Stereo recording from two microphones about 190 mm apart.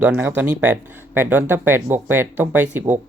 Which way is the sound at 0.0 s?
10° right (ahead or behind).